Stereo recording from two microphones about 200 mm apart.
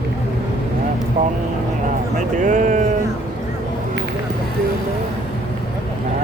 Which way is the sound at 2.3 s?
40° right (ahead or behind).